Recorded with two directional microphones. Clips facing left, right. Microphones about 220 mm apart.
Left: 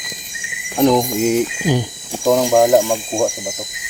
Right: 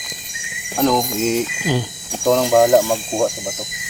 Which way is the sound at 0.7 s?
15° left (ahead or behind).